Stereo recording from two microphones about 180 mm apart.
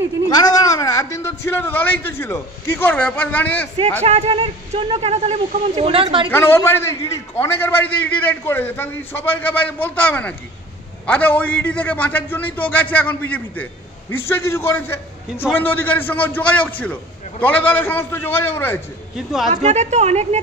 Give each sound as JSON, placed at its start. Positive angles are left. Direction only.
{"t": 0.3, "sound": "a man's voice", "side_deg": 20}
{"t": 4.0, "sound": "speech", "side_deg": -35}
{"t": 6.3, "sound": "a man's voice", "side_deg": 15}
{"t": 19.1, "sound": "speech", "side_deg": 0}
{"t": 19.5, "sound": "speech", "side_deg": -40}